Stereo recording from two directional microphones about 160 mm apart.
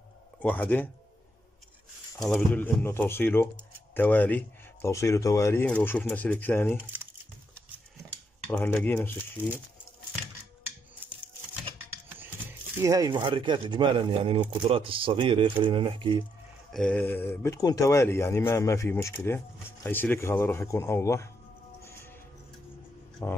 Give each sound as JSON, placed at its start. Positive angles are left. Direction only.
{"t": 0.4, "sound": "speech", "side_deg": 10}
{"t": 2.3, "sound": "speech", "side_deg": 15}
{"t": 6.8, "sound": "crumpling", "side_deg": -10}
{"t": 8.5, "sound": "speech", "side_deg": 10}
{"t": 12.8, "sound": "speech", "side_deg": -20}
{"t": 16.7, "sound": "speech", "side_deg": 10}
{"t": 23.2, "sound": "speech", "side_deg": 15}